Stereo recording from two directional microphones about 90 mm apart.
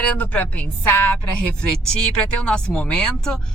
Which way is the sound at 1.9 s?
10° left (ahead or behind).